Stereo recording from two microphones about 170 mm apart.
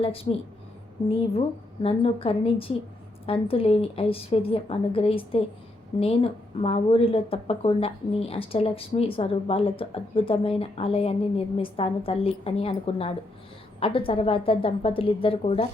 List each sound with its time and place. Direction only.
0.0 s speech: 35° left (ahead or behind)
1.8 s speech: 35° left (ahead or behind)